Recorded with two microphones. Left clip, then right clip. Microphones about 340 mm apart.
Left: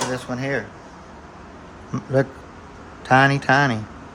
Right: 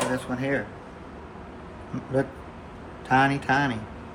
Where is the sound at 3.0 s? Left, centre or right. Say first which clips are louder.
Left 6 dB; left.